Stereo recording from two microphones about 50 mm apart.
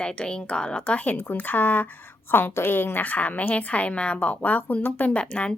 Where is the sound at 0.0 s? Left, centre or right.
Centre.